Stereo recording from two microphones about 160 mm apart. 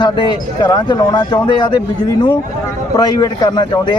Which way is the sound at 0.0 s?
30° left (ahead or behind).